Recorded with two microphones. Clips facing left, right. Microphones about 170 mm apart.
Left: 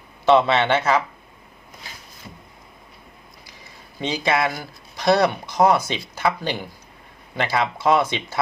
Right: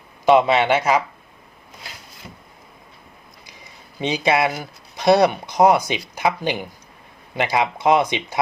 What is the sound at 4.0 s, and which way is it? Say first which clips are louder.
Speech: right 3 dB; 15° right (ahead or behind).